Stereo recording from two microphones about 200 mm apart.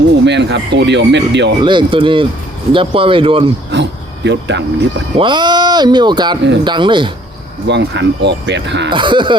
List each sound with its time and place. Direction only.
0.3 s speech: 60° right (ahead or behind)
1.6 s speech: 25° right (ahead or behind)
3.7 s insect: 60° right (ahead or behind)
5.1 s speech: 25° right (ahead or behind)
7.7 s speech: 60° right (ahead or behind)
8.9 s speech: 25° right (ahead or behind)